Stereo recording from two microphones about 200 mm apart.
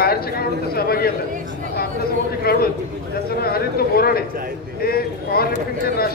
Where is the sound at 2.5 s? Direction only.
50° left (ahead or behind).